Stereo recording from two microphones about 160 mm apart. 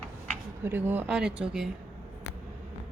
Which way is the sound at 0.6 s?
15° right (ahead or behind).